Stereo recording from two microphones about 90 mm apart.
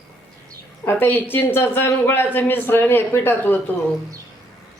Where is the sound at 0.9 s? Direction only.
20° left (ahead or behind).